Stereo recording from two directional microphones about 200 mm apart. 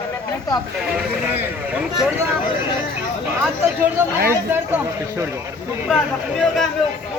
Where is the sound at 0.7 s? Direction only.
5° right (ahead or behind).